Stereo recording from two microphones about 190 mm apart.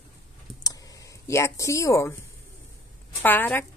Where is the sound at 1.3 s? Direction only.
15° left (ahead or behind).